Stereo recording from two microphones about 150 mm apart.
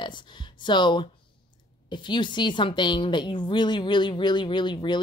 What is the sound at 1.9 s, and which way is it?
Speech, 30° left (ahead or behind).